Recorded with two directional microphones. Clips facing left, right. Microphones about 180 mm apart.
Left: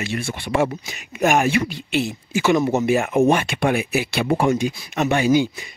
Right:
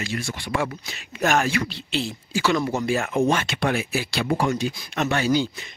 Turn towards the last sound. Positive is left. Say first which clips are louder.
# left 4 dB
turn(degrees=15)  # may be behind; listen again after turning